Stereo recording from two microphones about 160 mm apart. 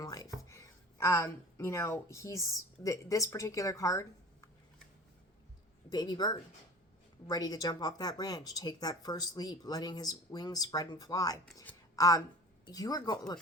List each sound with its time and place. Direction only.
0.0 s a sound: 20° left (ahead or behind)
2.8 s speech: 20° left (ahead or behind)
5.9 s a woman's voice: 25° left (ahead or behind)